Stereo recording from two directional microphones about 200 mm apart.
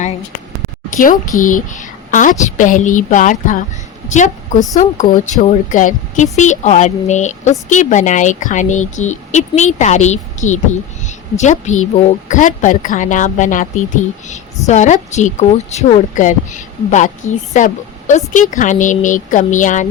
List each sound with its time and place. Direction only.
0.9 s a woman's voice: 40° left (ahead or behind)